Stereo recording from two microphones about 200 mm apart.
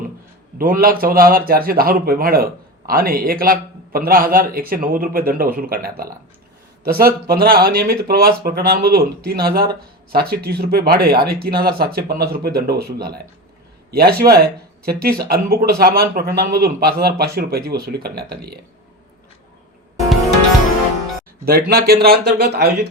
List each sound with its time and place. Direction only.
0.6 s speech: 45° right (ahead or behind)
21.4 s speech: 50° right (ahead or behind)